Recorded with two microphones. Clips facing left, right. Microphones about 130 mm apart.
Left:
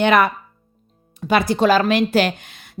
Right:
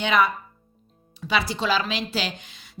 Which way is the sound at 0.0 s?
55° left (ahead or behind).